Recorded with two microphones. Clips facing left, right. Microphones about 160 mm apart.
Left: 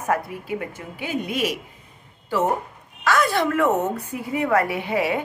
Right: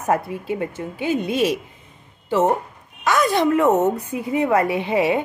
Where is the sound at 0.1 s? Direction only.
25° right (ahead or behind).